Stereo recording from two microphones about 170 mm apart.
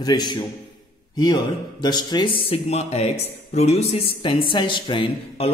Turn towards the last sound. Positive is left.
turn(degrees=30)  # may be behind; listen again after turning